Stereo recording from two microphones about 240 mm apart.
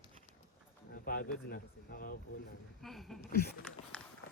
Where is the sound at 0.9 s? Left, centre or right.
Left.